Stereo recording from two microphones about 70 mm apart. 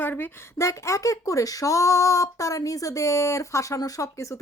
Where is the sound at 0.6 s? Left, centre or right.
Left.